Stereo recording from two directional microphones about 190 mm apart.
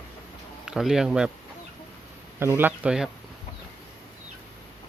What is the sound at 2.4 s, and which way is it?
Speech, 10° right (ahead or behind).